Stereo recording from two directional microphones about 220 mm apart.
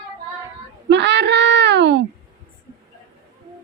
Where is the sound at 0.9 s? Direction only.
50° right (ahead or behind).